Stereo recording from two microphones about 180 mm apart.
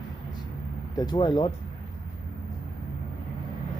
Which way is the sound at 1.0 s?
25° left (ahead or behind).